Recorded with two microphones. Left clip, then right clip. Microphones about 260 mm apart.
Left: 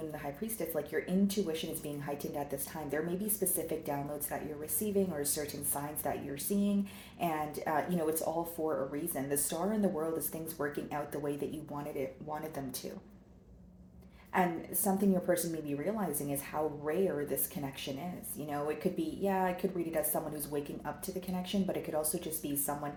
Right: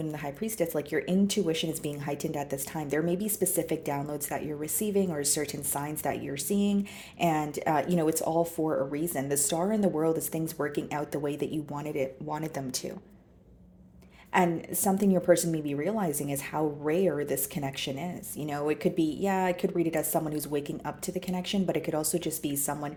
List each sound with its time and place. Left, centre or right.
0.1 s speech: right
14.9 s speech: right